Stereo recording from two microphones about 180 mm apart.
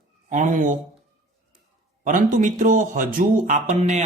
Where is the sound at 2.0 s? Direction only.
45° right (ahead or behind).